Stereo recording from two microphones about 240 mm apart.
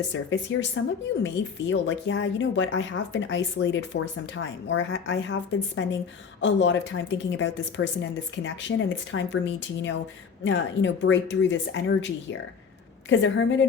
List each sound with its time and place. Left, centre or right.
0.1 s speech: left